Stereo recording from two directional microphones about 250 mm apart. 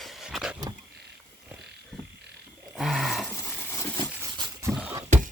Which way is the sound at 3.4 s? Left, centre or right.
Centre.